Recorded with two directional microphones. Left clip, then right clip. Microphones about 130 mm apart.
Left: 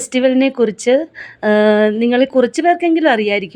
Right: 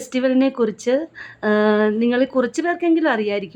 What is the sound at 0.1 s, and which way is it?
A woman's voice, 15° left (ahead or behind).